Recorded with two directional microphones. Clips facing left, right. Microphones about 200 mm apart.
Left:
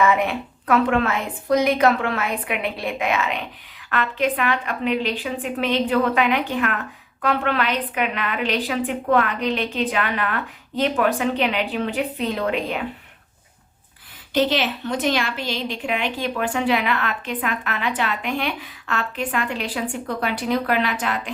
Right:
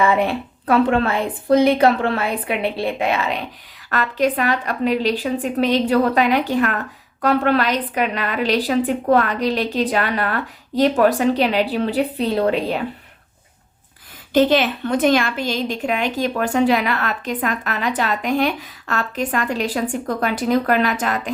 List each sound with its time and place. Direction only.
0.0 s a woman's voice: 30° right (ahead or behind)
14.3 s a woman's voice: 50° right (ahead or behind)